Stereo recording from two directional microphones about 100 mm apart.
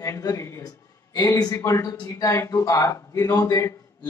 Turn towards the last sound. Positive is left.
turn(degrees=30)  # may be behind; listen again after turning